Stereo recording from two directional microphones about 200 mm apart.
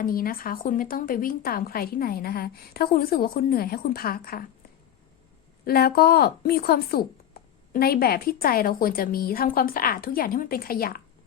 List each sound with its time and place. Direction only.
0.0 s a woman's voice: 45° left (ahead or behind)
5.6 s a woman's voice: 50° left (ahead or behind)